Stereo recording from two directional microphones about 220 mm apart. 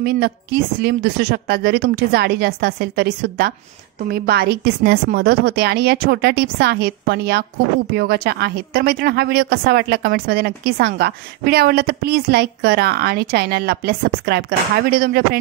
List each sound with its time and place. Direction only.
0.0 s a woman's voice: 45° right (ahead or behind)